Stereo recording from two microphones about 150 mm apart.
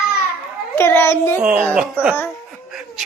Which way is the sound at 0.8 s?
15° left (ahead or behind).